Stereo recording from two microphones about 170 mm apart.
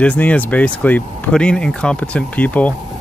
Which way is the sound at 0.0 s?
5° left (ahead or behind).